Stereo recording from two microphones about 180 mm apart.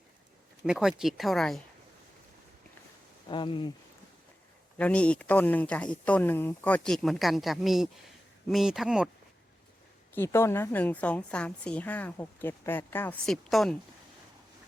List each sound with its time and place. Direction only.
0.6 s speech: 5° right (ahead or behind)
3.2 s speech: 25° left (ahead or behind)
4.8 s a woman's voice: 5° left (ahead or behind)
10.2 s a woman's voice: 15° left (ahead or behind)